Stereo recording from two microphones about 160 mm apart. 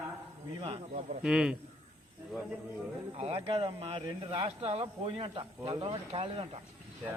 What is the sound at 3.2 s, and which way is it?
Speech, 35° right (ahead or behind).